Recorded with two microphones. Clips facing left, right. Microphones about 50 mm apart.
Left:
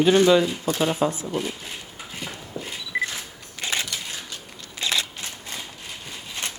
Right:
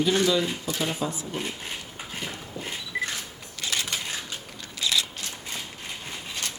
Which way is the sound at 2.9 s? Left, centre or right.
Left.